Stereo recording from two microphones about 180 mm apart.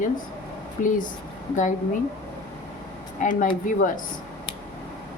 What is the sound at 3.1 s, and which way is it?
Speech, 45° left (ahead or behind).